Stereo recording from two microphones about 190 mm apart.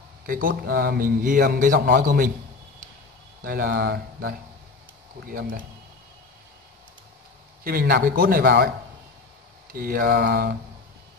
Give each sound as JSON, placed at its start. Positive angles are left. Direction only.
{"t": 0.3, "sound": "a man's voice", "side_deg": -50}
{"t": 3.4, "sound": "a man's voice", "side_deg": -50}
{"t": 7.6, "sound": "a man's voice", "side_deg": -50}
{"t": 9.7, "sound": "a man's voice", "side_deg": -50}